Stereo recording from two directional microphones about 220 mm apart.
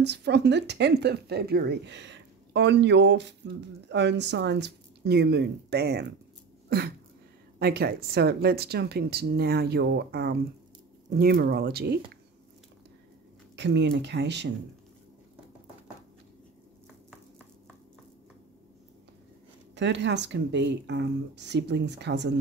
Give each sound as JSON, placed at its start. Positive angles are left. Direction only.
{"t": 0.0, "sound": "speech", "side_deg": -50}
{"t": 7.5, "sound": "speech", "side_deg": -45}
{"t": 13.6, "sound": "speech", "side_deg": -50}
{"t": 19.7, "sound": "speech", "side_deg": -50}